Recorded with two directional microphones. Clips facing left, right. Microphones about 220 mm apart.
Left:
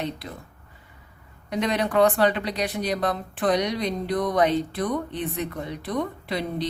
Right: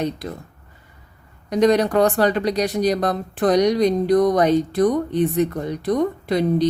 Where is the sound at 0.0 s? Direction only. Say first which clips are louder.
Right 6 dB; 45° right (ahead or behind).